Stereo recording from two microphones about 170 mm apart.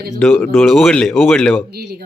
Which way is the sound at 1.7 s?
70° right (ahead or behind).